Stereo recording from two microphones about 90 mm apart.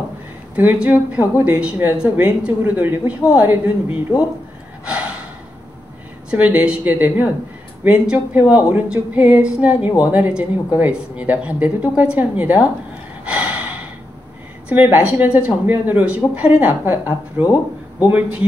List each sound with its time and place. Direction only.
0.6 s speech: 20° right (ahead or behind)
6.3 s a woman's voice: 15° right (ahead or behind)
13.2 s gasp: 15° right (ahead or behind)
14.7 s a woman's voice: 15° right (ahead or behind)